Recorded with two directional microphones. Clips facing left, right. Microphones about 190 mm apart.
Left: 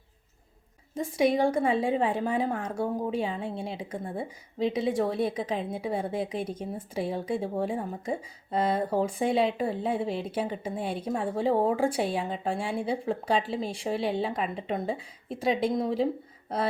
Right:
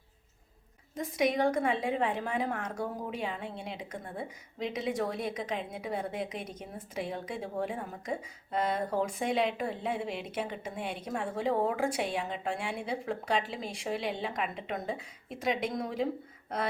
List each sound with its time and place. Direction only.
0.9 s a woman's voice: 30° left (ahead or behind)